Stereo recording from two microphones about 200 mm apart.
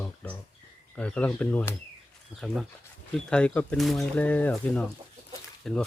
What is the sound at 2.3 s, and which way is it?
Speech, 10° right (ahead or behind).